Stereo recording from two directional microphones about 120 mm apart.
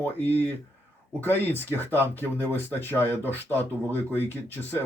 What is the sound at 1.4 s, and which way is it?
Speech, 20° right (ahead or behind).